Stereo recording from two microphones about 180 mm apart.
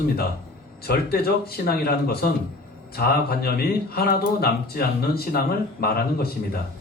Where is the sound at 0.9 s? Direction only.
60° left (ahead or behind).